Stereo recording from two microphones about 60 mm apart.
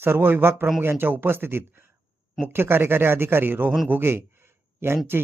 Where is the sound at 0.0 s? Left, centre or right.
Right.